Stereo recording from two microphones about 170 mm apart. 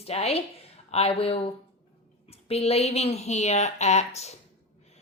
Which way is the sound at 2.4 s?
35° left (ahead or behind).